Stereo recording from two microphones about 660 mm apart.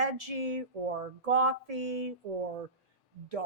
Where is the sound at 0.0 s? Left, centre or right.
Right.